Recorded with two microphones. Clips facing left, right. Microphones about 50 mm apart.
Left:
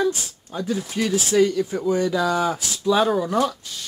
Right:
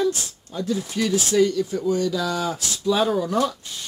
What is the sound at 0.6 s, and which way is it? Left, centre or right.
Speech, centre.